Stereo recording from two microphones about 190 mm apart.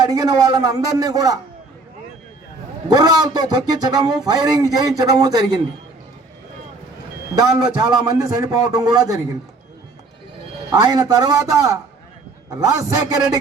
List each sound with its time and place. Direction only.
0.0 s a man's voice: 20° right (ahead or behind)
2.9 s a man's voice: 20° right (ahead or behind)
7.3 s a man's voice: 20° right (ahead or behind)
10.7 s a man's voice: 20° right (ahead or behind)